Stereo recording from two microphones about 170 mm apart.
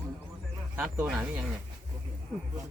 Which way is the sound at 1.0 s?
Centre (ahead or behind).